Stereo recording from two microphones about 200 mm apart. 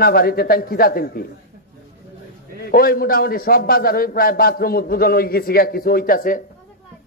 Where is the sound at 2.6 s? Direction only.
50° left (ahead or behind).